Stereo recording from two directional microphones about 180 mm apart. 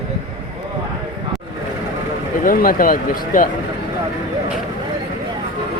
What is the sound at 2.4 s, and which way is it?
Speech, 50° left (ahead or behind).